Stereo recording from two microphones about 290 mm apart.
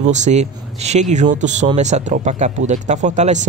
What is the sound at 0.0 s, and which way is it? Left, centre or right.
Speech, right.